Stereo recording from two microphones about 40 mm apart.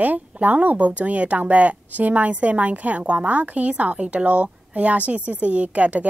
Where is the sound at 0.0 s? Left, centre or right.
Right.